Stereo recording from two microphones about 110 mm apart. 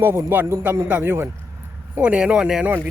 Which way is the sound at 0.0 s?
20° right (ahead or behind).